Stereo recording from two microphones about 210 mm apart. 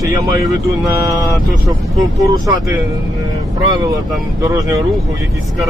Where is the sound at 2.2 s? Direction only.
15° right (ahead or behind).